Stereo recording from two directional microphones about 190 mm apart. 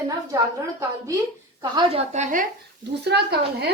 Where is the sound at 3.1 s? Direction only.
60° right (ahead or behind).